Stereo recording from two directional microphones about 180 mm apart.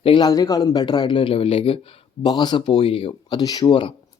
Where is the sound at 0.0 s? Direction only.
25° left (ahead or behind).